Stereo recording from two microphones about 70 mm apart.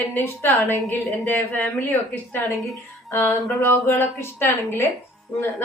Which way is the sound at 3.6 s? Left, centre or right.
Left.